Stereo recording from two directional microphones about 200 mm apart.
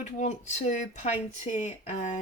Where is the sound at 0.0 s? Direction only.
35° left (ahead or behind).